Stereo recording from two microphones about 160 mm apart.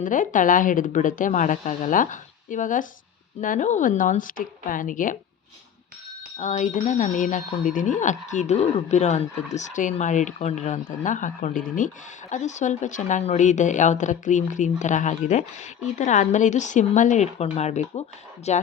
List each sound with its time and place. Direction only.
0.0 s a woman's voice: 55° left (ahead or behind)
6.4 s speech: 50° left (ahead or behind)